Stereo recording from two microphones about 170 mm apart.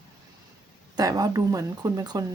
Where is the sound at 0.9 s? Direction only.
20° right (ahead or behind).